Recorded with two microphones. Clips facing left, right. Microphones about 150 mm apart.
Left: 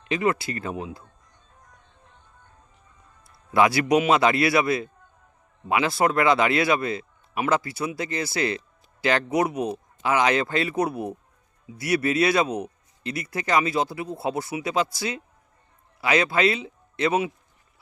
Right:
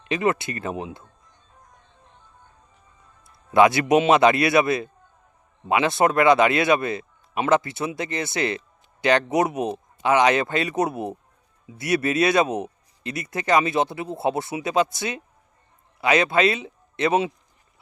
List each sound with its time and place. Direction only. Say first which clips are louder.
0.1 s speech: right 1 dB; 25° right (ahead or behind)
3.5 s a man's voice: right 3 dB; 20° right (ahead or behind)